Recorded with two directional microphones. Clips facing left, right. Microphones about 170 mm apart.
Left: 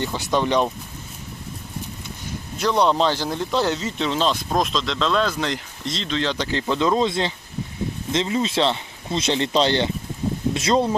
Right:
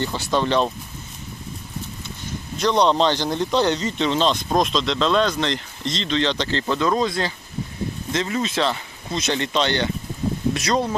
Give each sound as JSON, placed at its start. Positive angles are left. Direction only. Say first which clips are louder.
{"t": 0.0, "sound": "speech", "louder": "even", "side_deg": 15}
{"t": 2.6, "sound": "speech", "louder": "right 1 dB", "side_deg": 5}